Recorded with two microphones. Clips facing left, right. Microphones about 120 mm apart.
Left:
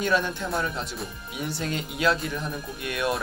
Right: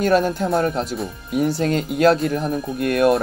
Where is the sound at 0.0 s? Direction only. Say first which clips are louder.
Right 8 dB; 50° right (ahead or behind).